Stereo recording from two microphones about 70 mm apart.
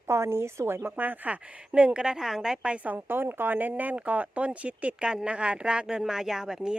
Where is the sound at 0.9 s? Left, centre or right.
Right.